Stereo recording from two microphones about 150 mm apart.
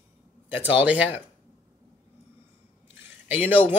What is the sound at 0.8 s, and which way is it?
Speech, 10° right (ahead or behind).